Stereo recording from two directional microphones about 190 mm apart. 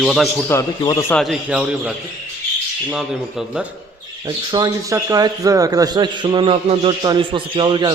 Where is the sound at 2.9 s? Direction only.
Centre (ahead or behind).